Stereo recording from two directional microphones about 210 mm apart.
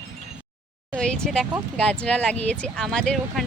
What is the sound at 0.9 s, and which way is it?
Speech, 5° left (ahead or behind).